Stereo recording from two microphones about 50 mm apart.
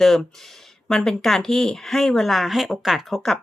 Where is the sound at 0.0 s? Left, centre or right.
Centre.